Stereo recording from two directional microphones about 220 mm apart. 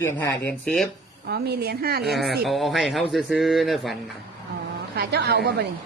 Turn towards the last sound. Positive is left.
turn(degrees=-50)  # may be behind; listen again after turning